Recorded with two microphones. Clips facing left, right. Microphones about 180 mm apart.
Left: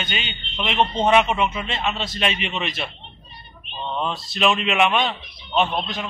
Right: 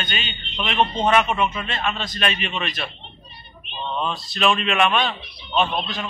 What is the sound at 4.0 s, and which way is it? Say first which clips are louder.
A man's voice: left 1 dB; 20° left (ahead or behind).